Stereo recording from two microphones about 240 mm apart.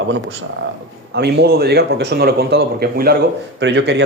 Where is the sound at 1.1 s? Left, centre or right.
Right.